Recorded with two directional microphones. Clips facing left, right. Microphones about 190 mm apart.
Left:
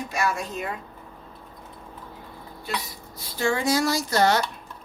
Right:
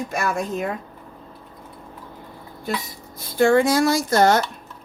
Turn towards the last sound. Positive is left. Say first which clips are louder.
# right 4 dB
turn(degrees=-50)  # may be behind; listen again after turning